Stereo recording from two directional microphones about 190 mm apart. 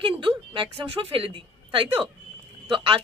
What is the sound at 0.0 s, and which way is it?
A woman's voice, 25° right (ahead or behind).